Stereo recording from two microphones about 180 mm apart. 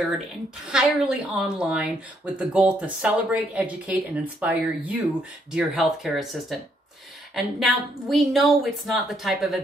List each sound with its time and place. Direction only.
0.7 s a woman's voice: 5° right (ahead or behind)
7.3 s a woman's voice: centre (ahead or behind)